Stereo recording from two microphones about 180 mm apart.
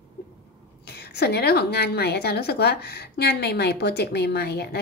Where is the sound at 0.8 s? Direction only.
65° left (ahead or behind).